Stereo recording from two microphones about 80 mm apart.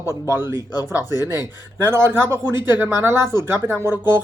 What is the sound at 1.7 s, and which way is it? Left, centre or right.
Speech, right.